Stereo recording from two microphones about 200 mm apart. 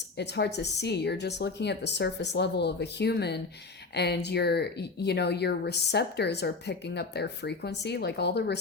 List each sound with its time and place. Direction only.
0.2 s speech: 60° left (ahead or behind)